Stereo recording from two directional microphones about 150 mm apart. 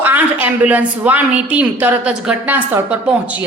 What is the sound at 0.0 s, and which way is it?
A woman's voice, 10° right (ahead or behind).